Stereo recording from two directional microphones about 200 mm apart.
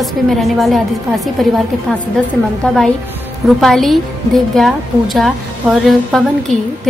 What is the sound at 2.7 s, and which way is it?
A woman's voice, 5° left (ahead or behind).